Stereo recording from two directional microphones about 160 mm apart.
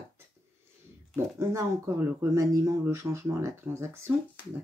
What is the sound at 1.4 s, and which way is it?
Speech, 20° right (ahead or behind).